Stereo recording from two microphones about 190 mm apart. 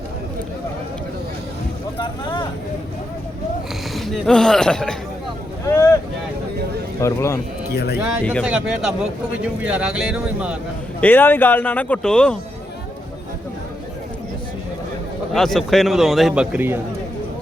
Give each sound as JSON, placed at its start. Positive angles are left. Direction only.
{"t": 2.0, "sound": "vehicle", "side_deg": 25}
{"t": 3.9, "sound": "speech", "side_deg": 0}
{"t": 5.6, "sound": "boat", "side_deg": 15}
{"t": 7.0, "sound": "speech", "side_deg": 15}
{"t": 7.7, "sound": "speech", "side_deg": 60}
{"t": 8.2, "sound": "speech", "side_deg": 10}
{"t": 8.4, "sound": "a man's voice", "side_deg": -5}
{"t": 11.0, "sound": "speech", "side_deg": 10}
{"t": 15.3, "sound": "a man's voice", "side_deg": 0}